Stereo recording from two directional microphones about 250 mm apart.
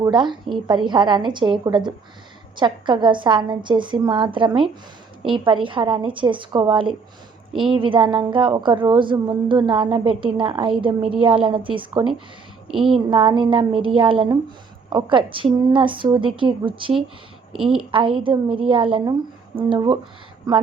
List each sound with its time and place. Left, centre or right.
0.0 s a woman's voice: centre
12.6 s speech: centre
13.1 s a woman's voice: centre
17.9 s a woman's voice: right